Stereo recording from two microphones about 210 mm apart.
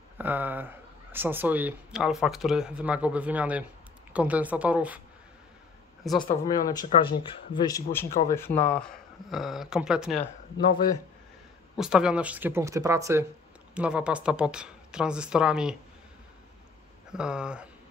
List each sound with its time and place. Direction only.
0.2 s speech: 10° right (ahead or behind)
6.1 s speech: 20° left (ahead or behind); by 10.2 s 5° right (ahead or behind)
11.7 s speech: 5° right (ahead or behind)
17.1 s speech: 5° right (ahead or behind)